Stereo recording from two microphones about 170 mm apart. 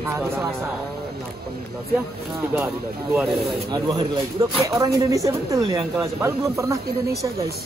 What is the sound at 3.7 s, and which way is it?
Speech, 25° right (ahead or behind).